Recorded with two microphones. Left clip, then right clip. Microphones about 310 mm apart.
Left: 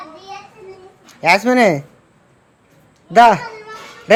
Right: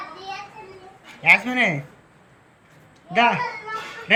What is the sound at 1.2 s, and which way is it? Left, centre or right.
Speech, centre.